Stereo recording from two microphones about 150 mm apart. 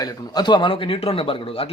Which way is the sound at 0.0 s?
30° left (ahead or behind).